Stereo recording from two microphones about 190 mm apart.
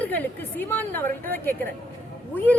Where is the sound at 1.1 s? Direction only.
50° right (ahead or behind).